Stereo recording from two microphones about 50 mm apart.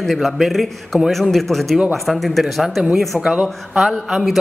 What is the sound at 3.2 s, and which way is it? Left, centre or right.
Speech, centre.